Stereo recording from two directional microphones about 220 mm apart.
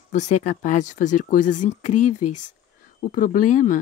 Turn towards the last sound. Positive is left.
turn(degrees=35)  # may be behind; listen again after turning